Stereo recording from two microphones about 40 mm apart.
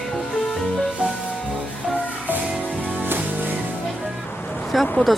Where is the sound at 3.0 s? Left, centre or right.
Right.